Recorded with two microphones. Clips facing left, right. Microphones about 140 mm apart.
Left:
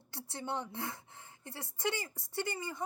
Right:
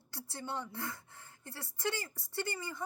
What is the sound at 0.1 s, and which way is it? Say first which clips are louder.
A woman's voice: left 2 dB; 20° left (ahead or behind).